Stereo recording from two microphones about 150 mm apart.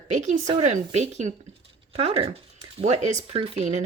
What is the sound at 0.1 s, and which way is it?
Speech, 50° right (ahead or behind).